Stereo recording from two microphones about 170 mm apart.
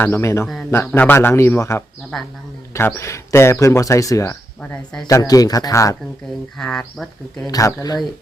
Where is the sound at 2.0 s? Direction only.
Centre (ahead or behind).